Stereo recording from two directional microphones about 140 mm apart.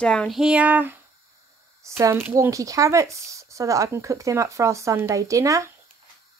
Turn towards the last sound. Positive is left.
turn(degrees=-20)  # may be behind; listen again after turning